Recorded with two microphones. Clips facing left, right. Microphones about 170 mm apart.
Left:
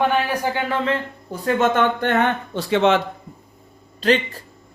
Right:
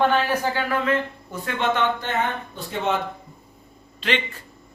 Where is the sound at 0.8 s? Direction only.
30° left (ahead or behind); by 3.0 s 90° left.